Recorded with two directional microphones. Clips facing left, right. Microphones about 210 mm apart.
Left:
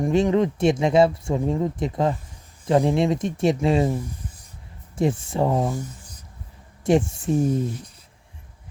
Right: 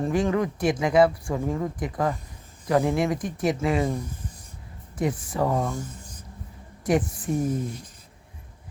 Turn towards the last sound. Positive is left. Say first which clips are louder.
# left 4 dB
turn(degrees=25)  # may be behind; listen again after turning